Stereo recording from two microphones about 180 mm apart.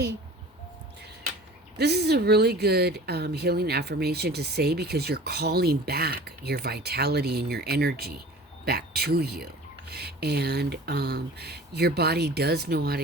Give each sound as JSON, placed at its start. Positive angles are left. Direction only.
{"t": 1.8, "sound": "speech", "side_deg": -65}